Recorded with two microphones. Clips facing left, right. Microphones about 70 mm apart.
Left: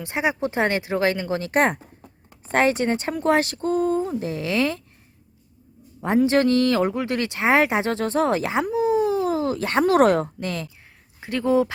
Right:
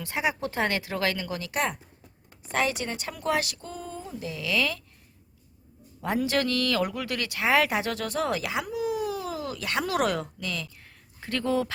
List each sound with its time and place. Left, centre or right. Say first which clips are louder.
0.0 s speech: left 5 dB; left
6.0 s speech: left 8 dB; left
11.2 s speech: left 7 dB; centre